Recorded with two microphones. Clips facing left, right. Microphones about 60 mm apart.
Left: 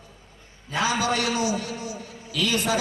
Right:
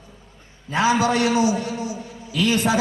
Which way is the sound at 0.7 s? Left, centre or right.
Right.